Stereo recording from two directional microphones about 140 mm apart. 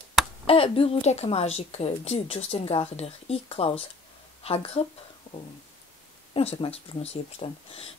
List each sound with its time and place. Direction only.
0.5 s a woman's voice: 45° left (ahead or behind)
5.3 s a sound: 60° left (ahead or behind)
6.3 s a woman's voice: 45° left (ahead or behind)